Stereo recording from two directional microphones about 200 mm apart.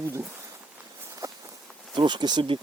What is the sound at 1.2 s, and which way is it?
Walk, 15° right (ahead or behind).